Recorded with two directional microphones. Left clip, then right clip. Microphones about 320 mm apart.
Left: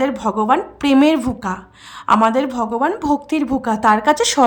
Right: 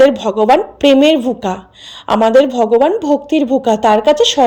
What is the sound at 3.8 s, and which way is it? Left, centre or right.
Speech, centre.